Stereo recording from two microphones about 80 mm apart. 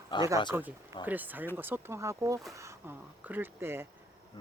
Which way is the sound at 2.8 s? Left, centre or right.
Right.